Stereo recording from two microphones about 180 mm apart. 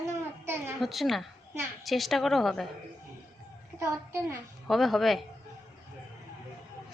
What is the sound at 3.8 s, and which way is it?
Speech, 15° right (ahead or behind).